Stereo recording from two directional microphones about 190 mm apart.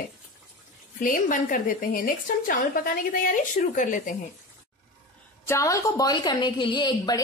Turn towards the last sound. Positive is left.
turn(degrees=25)  # may be behind; listen again after turning